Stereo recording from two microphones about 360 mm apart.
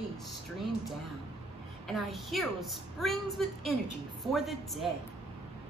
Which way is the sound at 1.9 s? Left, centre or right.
Centre.